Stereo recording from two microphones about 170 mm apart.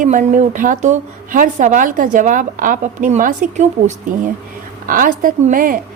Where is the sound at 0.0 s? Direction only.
50° right (ahead or behind).